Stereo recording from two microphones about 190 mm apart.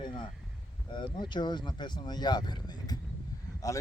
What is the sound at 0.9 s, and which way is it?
Speech, 25° left (ahead or behind).